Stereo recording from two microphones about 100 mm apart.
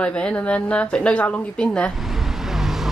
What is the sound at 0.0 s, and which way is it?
A woman's voice, 10° left (ahead or behind).